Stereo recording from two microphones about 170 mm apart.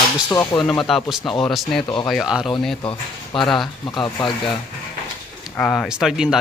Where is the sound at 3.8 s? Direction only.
25° left (ahead or behind).